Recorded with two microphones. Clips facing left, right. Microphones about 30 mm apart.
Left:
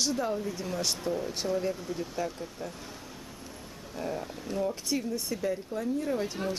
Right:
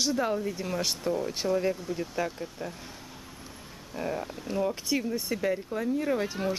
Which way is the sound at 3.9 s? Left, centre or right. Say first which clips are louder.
Right 2 dB; centre.